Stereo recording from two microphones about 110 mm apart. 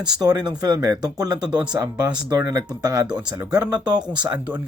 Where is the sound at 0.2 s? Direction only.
40° right (ahead or behind).